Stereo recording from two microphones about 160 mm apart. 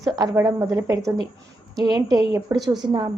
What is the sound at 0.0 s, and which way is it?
A woman's voice, 20° right (ahead or behind).